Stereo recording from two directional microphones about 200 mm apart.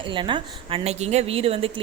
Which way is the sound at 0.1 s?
25° right (ahead or behind).